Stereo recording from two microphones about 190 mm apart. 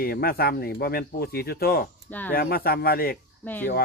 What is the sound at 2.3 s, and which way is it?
Speech, 50° left (ahead or behind).